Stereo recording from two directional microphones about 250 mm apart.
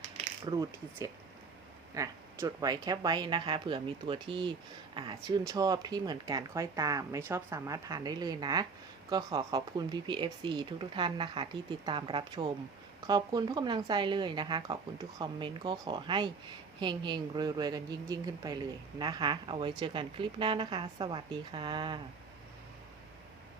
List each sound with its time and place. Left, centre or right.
0.4 s a woman's voice: centre